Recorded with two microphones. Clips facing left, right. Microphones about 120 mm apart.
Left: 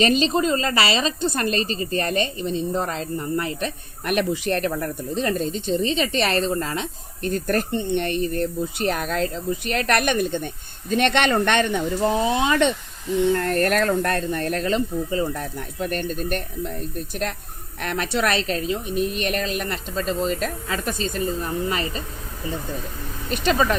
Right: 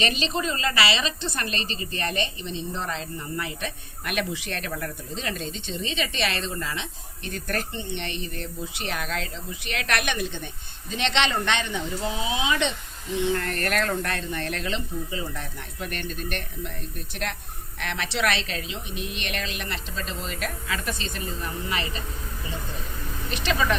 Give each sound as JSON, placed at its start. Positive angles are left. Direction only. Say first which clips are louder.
{"t": 0.0, "sound": "a woman's voice", "louder": "left 8 dB", "side_deg": 40}
{"t": 13.3, "sound": "speech", "louder": "left 6 dB", "side_deg": 40}
{"t": 17.7, "sound": "a woman's voice", "louder": "left 5 dB", "side_deg": 45}
{"t": 23.3, "sound": "a woman's voice", "louder": "left 6 dB", "side_deg": 40}